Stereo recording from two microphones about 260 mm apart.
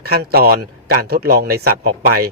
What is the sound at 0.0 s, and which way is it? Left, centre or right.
A man's voice, right.